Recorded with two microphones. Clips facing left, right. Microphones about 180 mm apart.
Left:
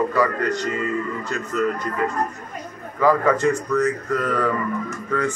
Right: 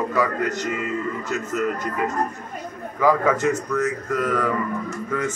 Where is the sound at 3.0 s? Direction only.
5° right (ahead or behind).